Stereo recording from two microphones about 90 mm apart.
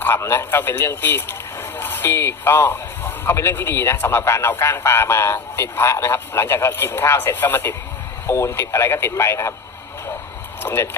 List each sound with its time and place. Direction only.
0.0 s a man's voice: 25° left (ahead or behind)
10.6 s speech: 25° left (ahead or behind)